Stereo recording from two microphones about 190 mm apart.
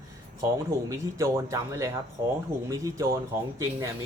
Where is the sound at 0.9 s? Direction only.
15° right (ahead or behind).